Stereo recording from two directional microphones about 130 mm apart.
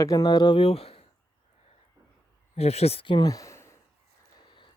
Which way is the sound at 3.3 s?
25° left (ahead or behind).